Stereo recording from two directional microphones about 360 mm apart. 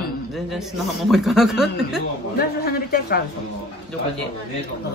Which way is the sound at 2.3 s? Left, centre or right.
Left.